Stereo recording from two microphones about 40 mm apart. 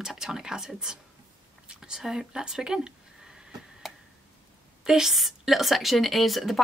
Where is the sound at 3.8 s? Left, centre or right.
Centre.